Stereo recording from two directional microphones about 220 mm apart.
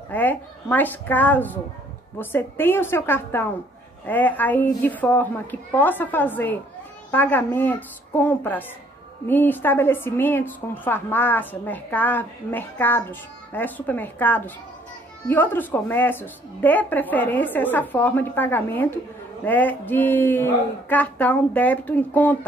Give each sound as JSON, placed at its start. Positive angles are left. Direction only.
{"t": 0.1, "sound": "a woman's voice", "side_deg": 10}